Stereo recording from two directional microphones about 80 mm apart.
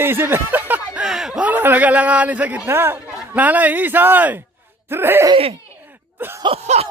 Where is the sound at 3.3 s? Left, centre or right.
Centre.